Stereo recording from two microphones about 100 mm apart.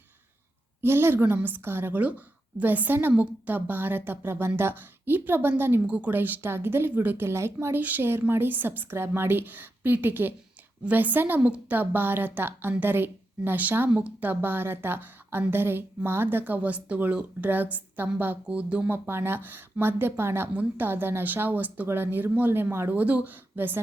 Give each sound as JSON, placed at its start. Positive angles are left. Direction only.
{"t": 0.8, "sound": "speech", "side_deg": -25}